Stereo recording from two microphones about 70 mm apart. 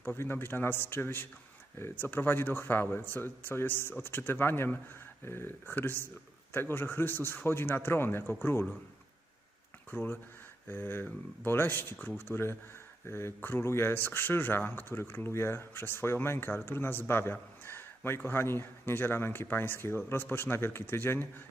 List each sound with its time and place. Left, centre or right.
0.2 s speech: left
9.9 s speech: left
17.3 s a sound: left
18.2 s speech: left